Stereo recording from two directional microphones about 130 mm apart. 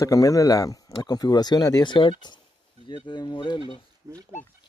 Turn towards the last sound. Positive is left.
turn(degrees=40)  # may be behind; listen again after turning